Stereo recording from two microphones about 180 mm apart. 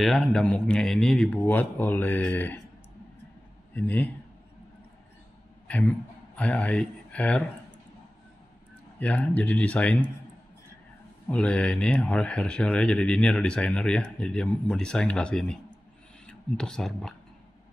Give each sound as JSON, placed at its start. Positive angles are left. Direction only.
{"t": 0.0, "sound": "speech", "side_deg": 0}
{"t": 3.7, "sound": "speech", "side_deg": 10}
{"t": 5.7, "sound": "speech", "side_deg": 10}
{"t": 9.0, "sound": "speech", "side_deg": 10}
{"t": 11.2, "sound": "speech", "side_deg": 5}